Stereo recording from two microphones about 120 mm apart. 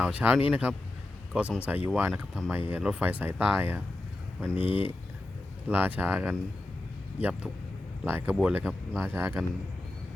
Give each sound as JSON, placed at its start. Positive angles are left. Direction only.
{"t": 0.0, "sound": "speech", "side_deg": -10}